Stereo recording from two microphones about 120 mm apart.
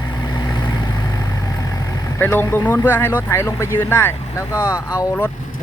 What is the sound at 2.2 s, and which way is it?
Speech, 15° left (ahead or behind).